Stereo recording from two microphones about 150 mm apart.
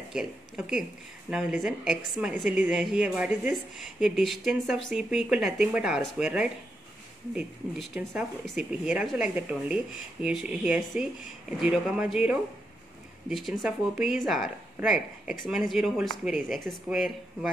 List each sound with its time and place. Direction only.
0.1 s speech: 5° right (ahead or behind)
8.0 s speech: 15° right (ahead or behind)